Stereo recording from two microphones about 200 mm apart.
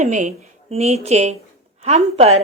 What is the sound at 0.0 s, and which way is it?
A woman's voice, 35° right (ahead or behind).